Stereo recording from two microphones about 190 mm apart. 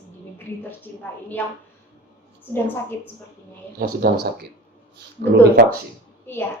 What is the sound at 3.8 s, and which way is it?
Speech, 55° right (ahead or behind).